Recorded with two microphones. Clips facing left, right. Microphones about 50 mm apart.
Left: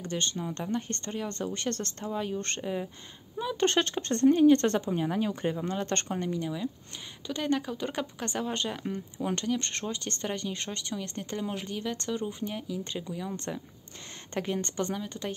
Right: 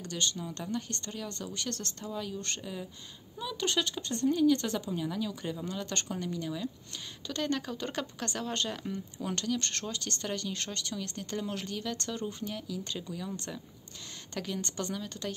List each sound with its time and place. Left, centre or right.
0.0 s speech: left
14.3 s speech: left